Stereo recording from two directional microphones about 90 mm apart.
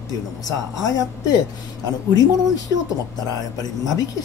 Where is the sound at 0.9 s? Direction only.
45° left (ahead or behind).